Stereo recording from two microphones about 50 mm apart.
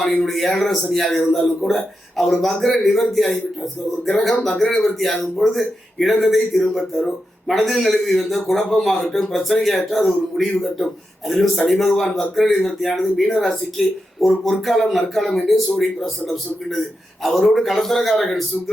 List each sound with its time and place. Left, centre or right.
0.3 s speech: centre
4.4 s speech: centre